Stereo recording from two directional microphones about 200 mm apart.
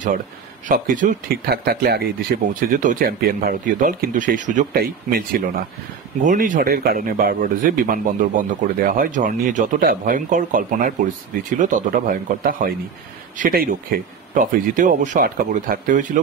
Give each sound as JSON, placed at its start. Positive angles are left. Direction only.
{"t": 0.7, "sound": "speech", "side_deg": -40}